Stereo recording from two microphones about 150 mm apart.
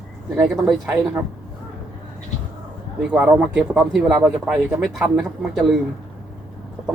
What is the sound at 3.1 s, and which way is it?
Speech, 5° right (ahead or behind).